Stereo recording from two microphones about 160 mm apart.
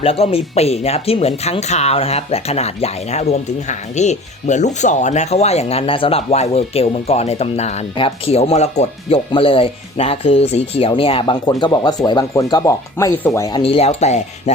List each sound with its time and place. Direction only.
0.0 s speech: 40° left (ahead or behind); by 13.5 s 15° left (ahead or behind)
13.5 s speech: 35° left (ahead or behind)